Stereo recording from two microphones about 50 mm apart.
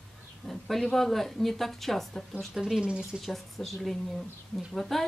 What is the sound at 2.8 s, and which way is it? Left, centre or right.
Speech, centre.